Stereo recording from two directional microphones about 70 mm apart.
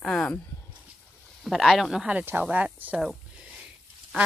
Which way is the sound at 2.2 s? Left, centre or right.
Right.